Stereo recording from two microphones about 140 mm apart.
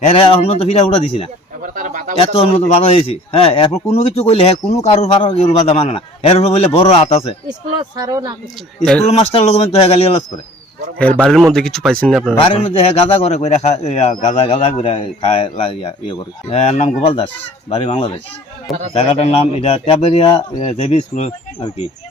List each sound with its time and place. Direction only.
0.1 s speech: 40° left (ahead or behind)
1.6 s a sound: 75° right (ahead or behind)
2.1 s speech: 40° left (ahead or behind)
7.4 s speech: 30° right (ahead or behind)
9.0 s speech: 45° left (ahead or behind)
10.9 s a man's voice: 10° left (ahead or behind)
12.4 s speech: 45° left (ahead or behind)
16.5 s speech: 50° left (ahead or behind)